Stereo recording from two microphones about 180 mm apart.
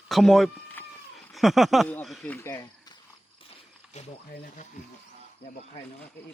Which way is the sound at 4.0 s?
40° left (ahead or behind).